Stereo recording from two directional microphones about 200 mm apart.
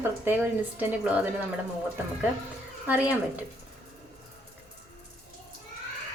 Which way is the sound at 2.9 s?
5° right (ahead or behind).